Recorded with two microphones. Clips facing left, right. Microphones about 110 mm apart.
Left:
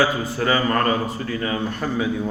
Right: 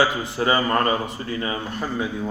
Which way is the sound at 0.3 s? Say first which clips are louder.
Even; 20° right (ahead or behind).